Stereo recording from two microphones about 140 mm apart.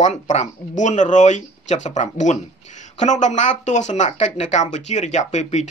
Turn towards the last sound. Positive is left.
turn(degrees=55)  # may be behind; listen again after turning